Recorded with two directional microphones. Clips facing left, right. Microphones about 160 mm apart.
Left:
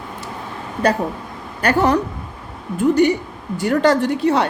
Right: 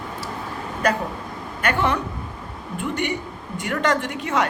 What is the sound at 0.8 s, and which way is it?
A woman's voice, 30° left (ahead or behind).